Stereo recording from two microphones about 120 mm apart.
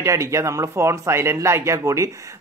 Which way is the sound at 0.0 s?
25° right (ahead or behind).